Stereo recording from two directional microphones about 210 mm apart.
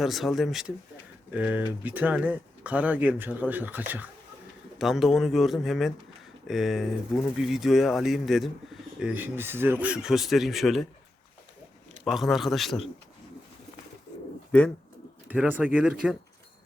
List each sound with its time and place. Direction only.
0.0 s speech: centre (ahead or behind)
12.0 s speech: centre (ahead or behind)
15.3 s speech: 10° right (ahead or behind)